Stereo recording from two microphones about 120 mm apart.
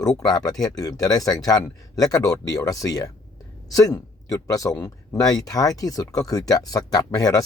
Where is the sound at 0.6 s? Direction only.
30° left (ahead or behind).